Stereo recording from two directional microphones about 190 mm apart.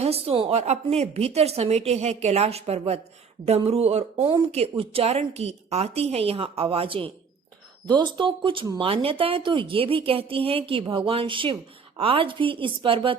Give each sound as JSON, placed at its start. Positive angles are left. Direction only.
{"t": 0.0, "sound": "a woman's voice", "side_deg": -30}